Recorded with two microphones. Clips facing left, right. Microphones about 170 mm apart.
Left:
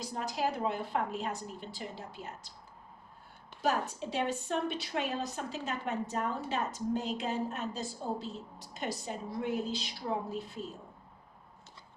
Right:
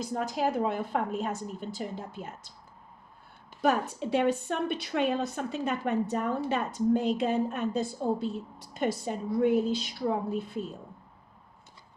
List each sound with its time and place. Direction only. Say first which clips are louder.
0.0 s a woman's voice: right 5 dB; 50° right (ahead or behind)
3.6 s a woman's voice: right 5 dB; 55° right (ahead or behind)